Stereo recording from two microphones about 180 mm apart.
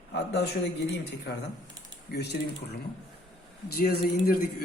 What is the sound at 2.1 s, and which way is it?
Speech, 65° left (ahead or behind).